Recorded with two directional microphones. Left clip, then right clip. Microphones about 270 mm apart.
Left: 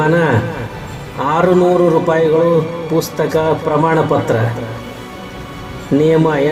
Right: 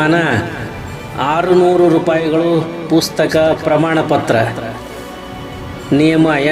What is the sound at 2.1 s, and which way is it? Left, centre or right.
Speech, centre.